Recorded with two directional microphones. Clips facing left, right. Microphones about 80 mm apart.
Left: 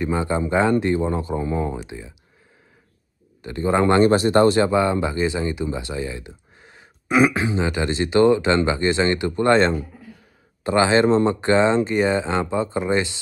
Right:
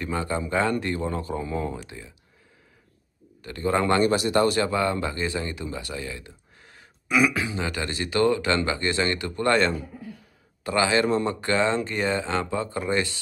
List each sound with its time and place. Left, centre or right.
0.0 s speech: centre
3.4 s speech: left
7.1 s speech: left